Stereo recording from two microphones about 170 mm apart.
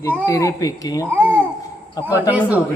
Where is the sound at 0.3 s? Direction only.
20° left (ahead or behind).